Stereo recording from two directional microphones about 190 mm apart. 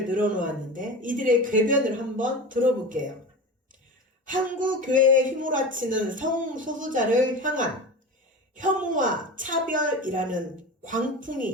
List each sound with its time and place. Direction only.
0.1 s speech: 45° right (ahead or behind)
4.3 s speech: 45° right (ahead or behind)
8.9 s speech: 45° right (ahead or behind)